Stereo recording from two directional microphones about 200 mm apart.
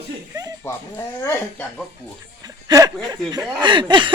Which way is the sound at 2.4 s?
20° right (ahead or behind).